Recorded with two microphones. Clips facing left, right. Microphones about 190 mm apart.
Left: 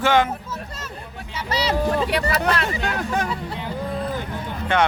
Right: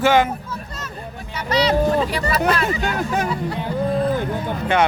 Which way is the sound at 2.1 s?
65° left (ahead or behind).